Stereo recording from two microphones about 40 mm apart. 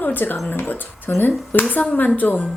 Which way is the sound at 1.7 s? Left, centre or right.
Left.